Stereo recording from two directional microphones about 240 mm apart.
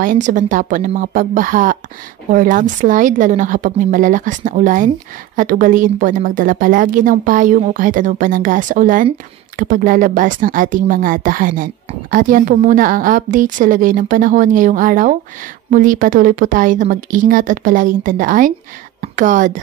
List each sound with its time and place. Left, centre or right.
0.0 s a woman's voice: right